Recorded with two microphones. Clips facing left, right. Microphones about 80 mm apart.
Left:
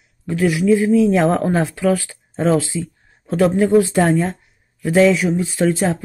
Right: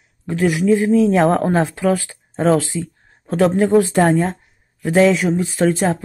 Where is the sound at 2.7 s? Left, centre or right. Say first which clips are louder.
Even; right.